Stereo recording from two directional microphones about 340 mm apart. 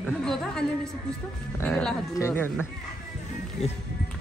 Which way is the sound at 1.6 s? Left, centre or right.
Centre.